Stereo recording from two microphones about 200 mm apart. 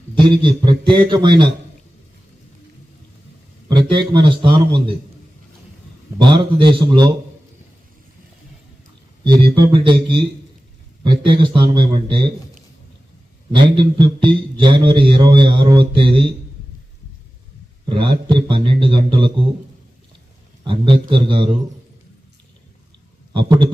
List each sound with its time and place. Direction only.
0.2 s a man's voice: 25° right (ahead or behind)
3.7 s a man's voice: 20° right (ahead or behind)
6.1 s a man's voice: 25° right (ahead or behind)
9.2 s a man's voice: 20° right (ahead or behind)
13.5 s a man's voice: 25° right (ahead or behind)
17.8 s a man's voice: 25° right (ahead or behind)
20.7 s a man's voice: 25° right (ahead or behind)
23.3 s a man's voice: 25° right (ahead or behind)